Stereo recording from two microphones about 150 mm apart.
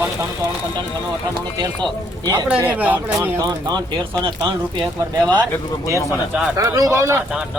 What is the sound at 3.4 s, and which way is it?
Speech, 25° right (ahead or behind).